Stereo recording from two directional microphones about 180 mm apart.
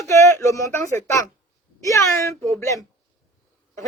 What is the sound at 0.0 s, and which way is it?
A woman's voice, 15° left (ahead or behind).